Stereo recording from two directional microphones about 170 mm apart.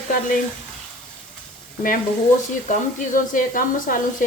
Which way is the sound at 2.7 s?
50° left (ahead or behind).